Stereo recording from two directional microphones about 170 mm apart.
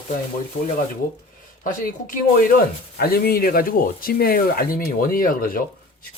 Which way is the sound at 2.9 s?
65° left (ahead or behind).